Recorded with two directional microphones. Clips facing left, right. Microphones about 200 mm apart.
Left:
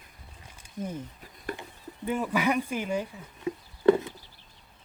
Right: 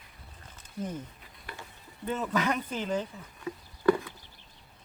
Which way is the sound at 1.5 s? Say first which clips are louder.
Left 9 dB; 45° left (ahead or behind).